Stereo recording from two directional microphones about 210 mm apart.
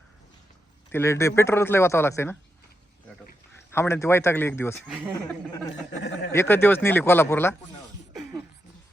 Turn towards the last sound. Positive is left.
turn(degrees=10)  # may be behind; listen again after turning